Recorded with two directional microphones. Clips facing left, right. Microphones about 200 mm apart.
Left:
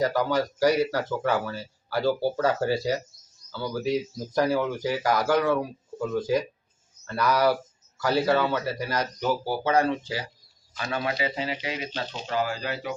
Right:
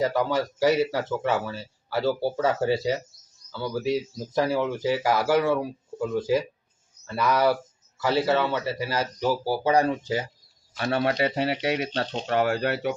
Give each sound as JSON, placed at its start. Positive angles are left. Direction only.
{"t": 0.0, "sound": "speech", "side_deg": 0}
{"t": 10.8, "sound": "speech", "side_deg": -60}